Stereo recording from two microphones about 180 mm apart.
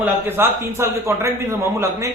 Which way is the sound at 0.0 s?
10° right (ahead or behind).